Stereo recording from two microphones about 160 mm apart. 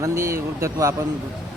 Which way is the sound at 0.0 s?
20° right (ahead or behind).